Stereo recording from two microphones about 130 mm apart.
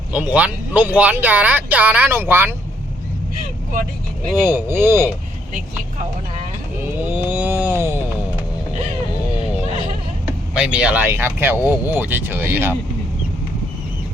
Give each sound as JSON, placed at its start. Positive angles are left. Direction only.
{"t": 0.1, "sound": "speech", "side_deg": -10}
{"t": 4.4, "sound": "speech", "side_deg": -15}
{"t": 6.8, "sound": "vehicle", "side_deg": -15}
{"t": 10.6, "sound": "speech", "side_deg": -5}